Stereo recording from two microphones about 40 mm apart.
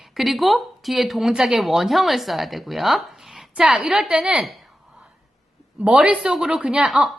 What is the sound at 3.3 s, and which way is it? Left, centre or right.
A woman's voice, right.